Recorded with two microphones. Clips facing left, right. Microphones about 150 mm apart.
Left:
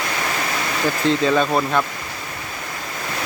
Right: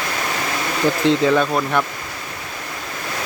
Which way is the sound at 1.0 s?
20° right (ahead or behind).